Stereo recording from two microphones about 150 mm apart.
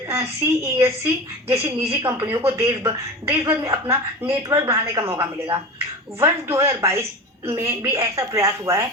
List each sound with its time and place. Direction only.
0.8 s speech: 20° right (ahead or behind)